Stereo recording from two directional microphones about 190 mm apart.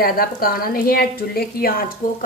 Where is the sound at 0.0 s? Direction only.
50° left (ahead or behind).